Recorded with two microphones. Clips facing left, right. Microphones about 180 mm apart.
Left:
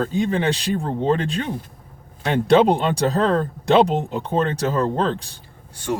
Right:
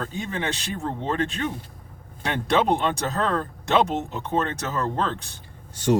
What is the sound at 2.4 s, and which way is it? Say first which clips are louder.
Speech: left 6 dB; 30° left (ahead or behind).